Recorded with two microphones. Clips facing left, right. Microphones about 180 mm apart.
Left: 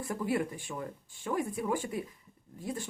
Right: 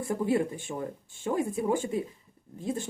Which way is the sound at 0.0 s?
25° right (ahead or behind).